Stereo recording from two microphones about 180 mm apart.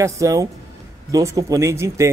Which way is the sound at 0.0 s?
15° right (ahead or behind).